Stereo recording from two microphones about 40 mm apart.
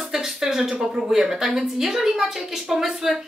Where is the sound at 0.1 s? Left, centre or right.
Centre.